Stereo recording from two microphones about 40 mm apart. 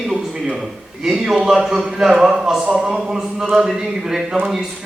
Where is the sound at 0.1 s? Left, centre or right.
Centre.